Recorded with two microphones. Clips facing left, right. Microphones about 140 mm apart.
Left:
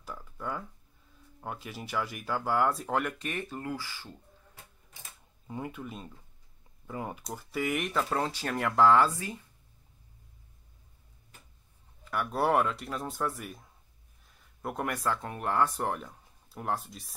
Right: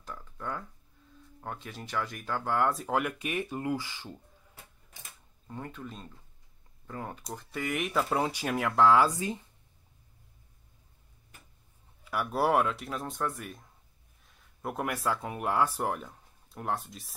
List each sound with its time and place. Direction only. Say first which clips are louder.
0.0 s a sound: left 1 dB; 5° left (ahead or behind)
1.4 s speech: left 1 dB; 10° left (ahead or behind); by 4.1 s 20° right (ahead or behind)
5.5 s speech: left 3 dB; 10° left (ahead or behind); by 8.5 s 10° right (ahead or behind)
8.5 s speech: even; centre (ahead or behind)
9.0 s speech: right 1 dB; 20° right (ahead or behind)
12.0 s speech: right 1 dB; 5° right (ahead or behind)